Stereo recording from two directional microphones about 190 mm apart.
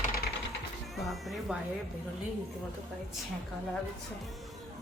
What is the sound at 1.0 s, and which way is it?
Speech, centre (ahead or behind).